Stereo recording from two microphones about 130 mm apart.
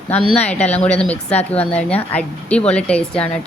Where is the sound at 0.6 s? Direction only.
10° left (ahead or behind).